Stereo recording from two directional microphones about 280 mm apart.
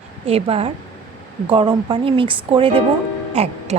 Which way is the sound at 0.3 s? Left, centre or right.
Right.